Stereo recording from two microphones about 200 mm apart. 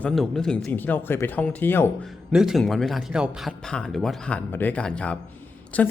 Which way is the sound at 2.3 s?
Centre (ahead or behind).